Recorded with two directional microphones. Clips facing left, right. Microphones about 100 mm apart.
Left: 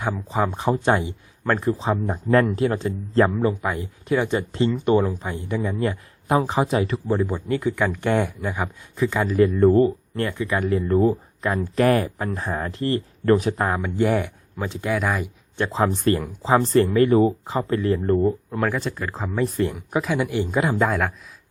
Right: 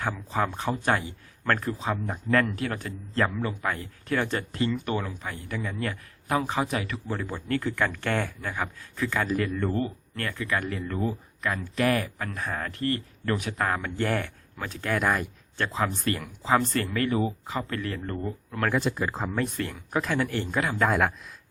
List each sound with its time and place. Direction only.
0.0 s speech: 15° left (ahead or behind)
3.6 s speech: 15° left (ahead or behind)
9.6 s speech: 30° left (ahead or behind)
10.7 s speech: 35° left (ahead or behind)
13.7 s speech: 15° left (ahead or behind)
14.9 s speech: centre (ahead or behind)
15.7 s speech: 30° left (ahead or behind)
17.1 s speech: 45° left (ahead or behind)
17.4 s speech: 30° left (ahead or behind)
18.7 s speech: 5° right (ahead or behind)
19.5 s speech: 20° left (ahead or behind)
20.8 s speech: centre (ahead or behind)